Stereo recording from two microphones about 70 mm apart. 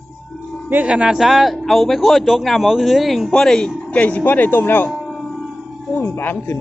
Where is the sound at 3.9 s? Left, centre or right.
Left.